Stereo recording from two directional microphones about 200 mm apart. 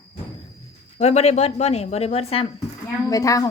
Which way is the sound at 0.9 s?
35° left (ahead or behind).